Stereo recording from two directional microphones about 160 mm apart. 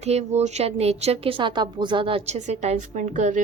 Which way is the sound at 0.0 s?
40° right (ahead or behind).